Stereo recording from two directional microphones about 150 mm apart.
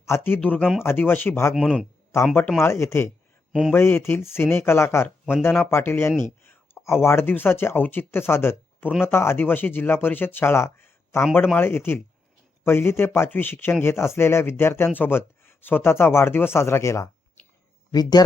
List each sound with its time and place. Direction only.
0.0 s speech: 15° left (ahead or behind)
1.5 s a man's voice: centre (ahead or behind)
2.3 s speech: 15° left (ahead or behind)